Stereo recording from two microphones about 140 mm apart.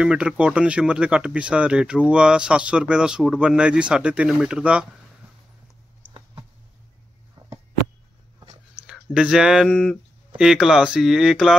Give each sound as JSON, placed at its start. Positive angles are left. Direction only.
{"t": 0.0, "sound": "speech", "side_deg": -5}
{"t": 7.4, "sound": "a sound", "side_deg": -40}
{"t": 8.8, "sound": "speech", "side_deg": -5}
{"t": 9.7, "sound": "speech", "side_deg": 10}
{"t": 10.3, "sound": "speech", "side_deg": -5}